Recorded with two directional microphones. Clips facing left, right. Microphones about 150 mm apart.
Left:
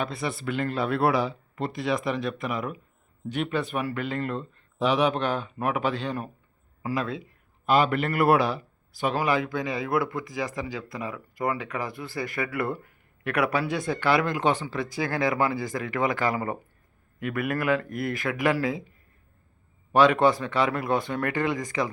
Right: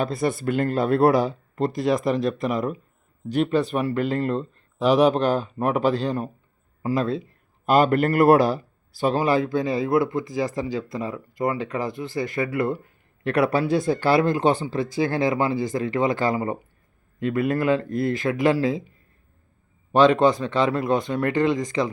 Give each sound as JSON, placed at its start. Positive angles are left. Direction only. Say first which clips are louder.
{"t": 0.0, "sound": "a man's voice", "louder": "right 6 dB", "side_deg": -40}
{"t": 19.9, "sound": "a man's voice", "louder": "right 3 dB", "side_deg": -25}